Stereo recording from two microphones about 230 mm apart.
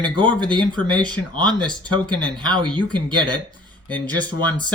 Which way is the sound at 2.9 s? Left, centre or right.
Centre.